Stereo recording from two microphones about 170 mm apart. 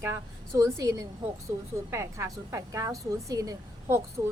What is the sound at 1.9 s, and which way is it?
A woman's voice, 15° right (ahead or behind).